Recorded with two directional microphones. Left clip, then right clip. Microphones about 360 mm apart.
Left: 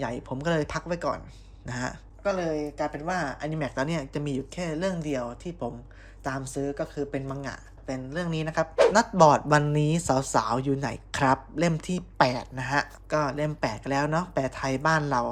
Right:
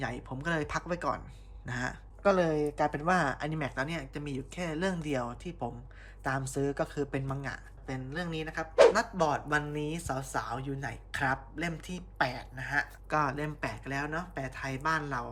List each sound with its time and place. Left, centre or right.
0.0 s speech: centre
2.2 s speech: centre
13.1 s speech: centre